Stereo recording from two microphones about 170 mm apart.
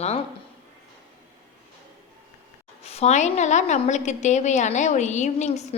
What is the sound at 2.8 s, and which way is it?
A woman's voice, 40° left (ahead or behind).